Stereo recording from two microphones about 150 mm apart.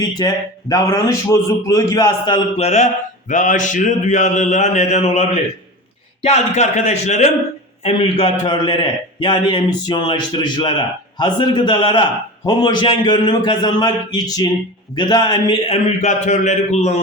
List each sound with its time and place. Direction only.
0.0 s a man's voice: 25° left (ahead or behind)
2.6 s mantra: 45° left (ahead or behind)
7.9 s a man's voice: 40° left (ahead or behind)
14.9 s mantra: 30° left (ahead or behind); by 17.0 s 45° left (ahead or behind)